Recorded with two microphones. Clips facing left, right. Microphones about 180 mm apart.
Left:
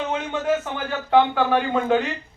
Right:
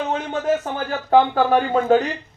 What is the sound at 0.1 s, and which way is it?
Speech, 35° right (ahead or behind).